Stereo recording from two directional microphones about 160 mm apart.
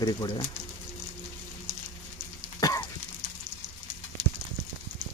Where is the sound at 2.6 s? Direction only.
20° left (ahead or behind).